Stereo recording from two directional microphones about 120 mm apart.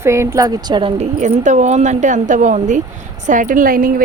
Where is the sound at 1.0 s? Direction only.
75° right (ahead or behind); by 3.6 s 90° right.